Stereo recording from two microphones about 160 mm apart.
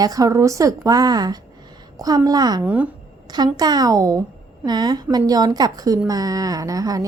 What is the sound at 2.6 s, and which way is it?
Speech, 10° right (ahead or behind).